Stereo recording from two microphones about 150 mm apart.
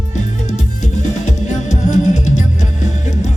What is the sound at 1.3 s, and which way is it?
Music, 50° left (ahead or behind).